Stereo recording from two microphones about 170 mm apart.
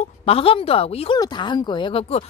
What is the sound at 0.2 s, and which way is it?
Speech, 35° left (ahead or behind).